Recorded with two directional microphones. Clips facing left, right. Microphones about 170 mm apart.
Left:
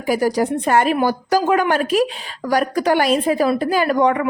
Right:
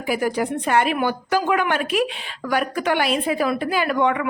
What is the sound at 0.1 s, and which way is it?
A woman's voice, 40° left (ahead or behind).